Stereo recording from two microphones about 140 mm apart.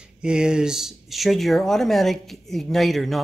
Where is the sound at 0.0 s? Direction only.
5° right (ahead or behind).